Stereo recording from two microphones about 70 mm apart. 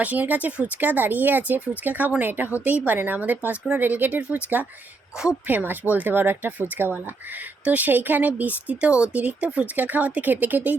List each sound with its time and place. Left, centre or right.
0.0 s speech: right